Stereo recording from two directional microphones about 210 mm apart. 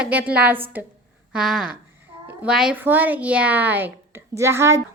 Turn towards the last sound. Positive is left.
turn(degrees=-15)  # may be behind; listen again after turning